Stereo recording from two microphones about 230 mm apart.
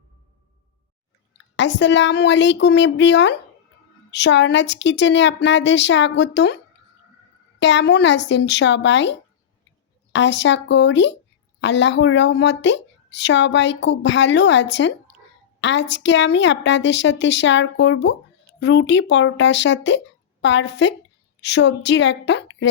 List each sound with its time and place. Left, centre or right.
1.5 s a woman's voice: left
7.6 s a woman's voice: left